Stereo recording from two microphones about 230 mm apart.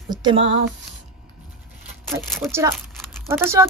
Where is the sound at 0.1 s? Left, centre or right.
Right.